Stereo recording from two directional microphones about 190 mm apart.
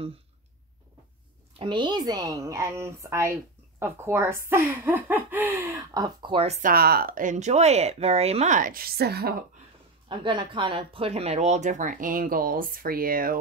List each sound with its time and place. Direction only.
1.6 s speech: 25° right (ahead or behind)
6.7 s speech: 55° right (ahead or behind)
10.0 s speech: 25° right (ahead or behind); by 13.4 s 50° right (ahead or behind)